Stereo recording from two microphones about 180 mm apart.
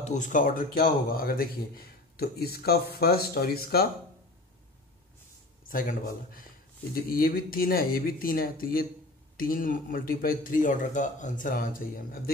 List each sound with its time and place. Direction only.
0.0 s speech: 45° left (ahead or behind); by 3.8 s 60° left (ahead or behind)
5.7 s speech: 50° left (ahead or behind)